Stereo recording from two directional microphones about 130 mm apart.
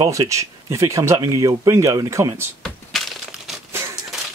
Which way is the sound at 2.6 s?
Centre (ahead or behind).